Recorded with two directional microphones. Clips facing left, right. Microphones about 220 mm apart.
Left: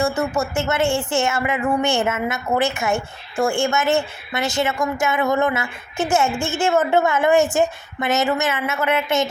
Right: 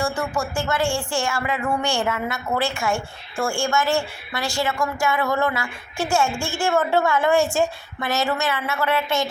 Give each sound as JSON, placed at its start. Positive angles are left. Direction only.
{"t": 0.0, "sound": "speech", "side_deg": 20}